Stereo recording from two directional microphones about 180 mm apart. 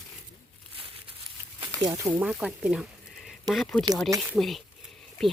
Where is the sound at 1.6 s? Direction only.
20° right (ahead or behind).